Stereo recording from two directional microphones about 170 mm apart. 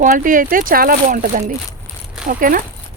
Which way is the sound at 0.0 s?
50° right (ahead or behind).